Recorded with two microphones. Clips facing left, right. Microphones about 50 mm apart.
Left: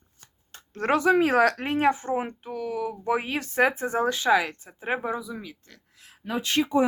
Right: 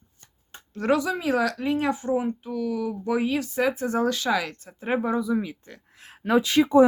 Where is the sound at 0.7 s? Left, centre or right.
Left.